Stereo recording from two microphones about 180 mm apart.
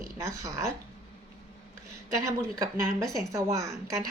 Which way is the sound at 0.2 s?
15° right (ahead or behind).